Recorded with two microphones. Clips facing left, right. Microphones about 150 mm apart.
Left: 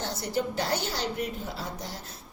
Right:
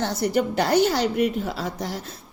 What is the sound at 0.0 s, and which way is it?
A woman's voice, 75° right (ahead or behind).